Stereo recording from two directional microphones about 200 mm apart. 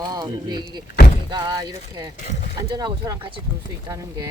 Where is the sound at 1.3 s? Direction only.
20° right (ahead or behind).